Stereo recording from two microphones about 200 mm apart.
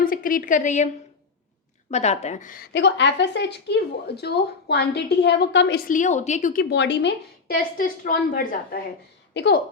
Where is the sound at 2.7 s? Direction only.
60° left (ahead or behind).